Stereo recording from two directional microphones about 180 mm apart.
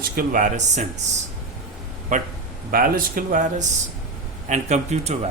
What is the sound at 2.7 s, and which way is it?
Speech, 50° right (ahead or behind).